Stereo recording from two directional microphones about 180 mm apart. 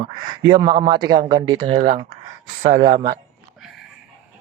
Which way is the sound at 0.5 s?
25° right (ahead or behind).